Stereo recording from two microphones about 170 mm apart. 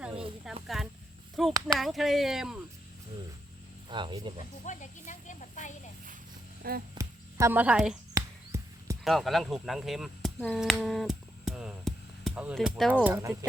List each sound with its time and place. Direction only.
0.4 s speech: centre (ahead or behind)
3.8 s speech: 30° right (ahead or behind)
4.6 s speech: 45° left (ahead or behind)
6.6 s a sound: 65° right (ahead or behind)
6.9 s a sound: 15° right (ahead or behind)
8.1 s basketball bounce: 20° right (ahead or behind)
9.0 s speech: centre (ahead or behind)
10.4 s a sound: centre (ahead or behind)
12.5 s speech: centre (ahead or behind)
12.9 s speech: 10° right (ahead or behind)